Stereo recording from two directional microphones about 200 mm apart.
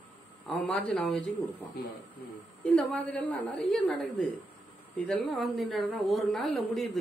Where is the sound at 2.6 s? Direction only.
5° left (ahead or behind).